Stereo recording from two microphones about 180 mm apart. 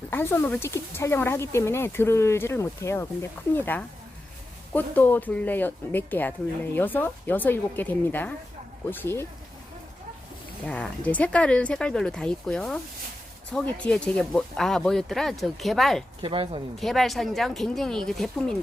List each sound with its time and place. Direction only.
0.1 s speech: 10° left (ahead or behind)
10.7 s speech: 5° left (ahead or behind)
16.2 s speech: 30° right (ahead or behind)
16.8 s speech: centre (ahead or behind)